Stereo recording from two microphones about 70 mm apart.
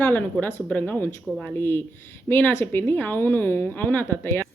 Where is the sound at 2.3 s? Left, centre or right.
Left.